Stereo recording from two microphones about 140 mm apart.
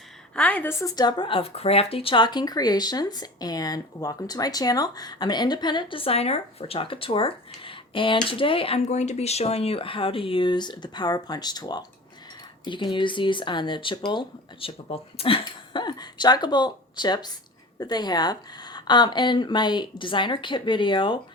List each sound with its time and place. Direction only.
0.3 s speech: 10° left (ahead or behind); by 21.2 s 35° left (ahead or behind)